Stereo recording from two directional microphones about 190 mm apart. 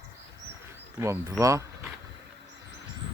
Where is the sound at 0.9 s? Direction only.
15° right (ahead or behind).